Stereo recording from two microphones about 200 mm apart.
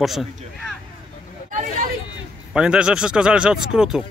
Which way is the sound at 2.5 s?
5° right (ahead or behind).